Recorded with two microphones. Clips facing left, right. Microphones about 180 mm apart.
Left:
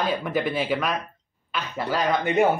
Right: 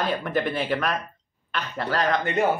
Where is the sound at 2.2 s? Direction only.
15° left (ahead or behind).